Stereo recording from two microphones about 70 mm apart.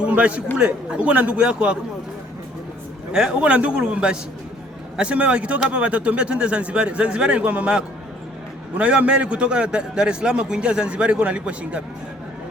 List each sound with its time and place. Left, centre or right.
0.0 s a man's voice: centre
3.1 s a man's voice: centre